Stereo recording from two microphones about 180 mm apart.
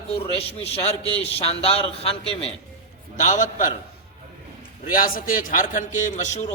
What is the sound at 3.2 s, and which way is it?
Speech, 45° left (ahead or behind).